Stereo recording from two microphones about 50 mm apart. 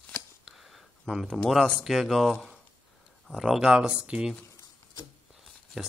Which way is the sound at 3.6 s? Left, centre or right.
Centre.